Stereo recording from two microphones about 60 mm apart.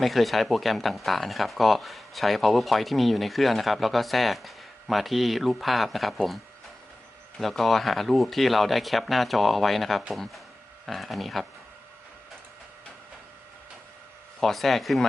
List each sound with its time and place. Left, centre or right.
0.0 s speech: centre
7.3 s speech: centre
14.4 s speech: centre